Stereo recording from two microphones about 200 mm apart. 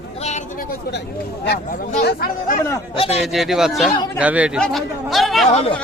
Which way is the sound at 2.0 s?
50° left (ahead or behind).